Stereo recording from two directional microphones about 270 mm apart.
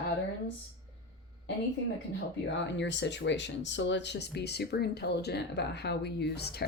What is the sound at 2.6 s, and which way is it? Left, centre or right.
Speech, left.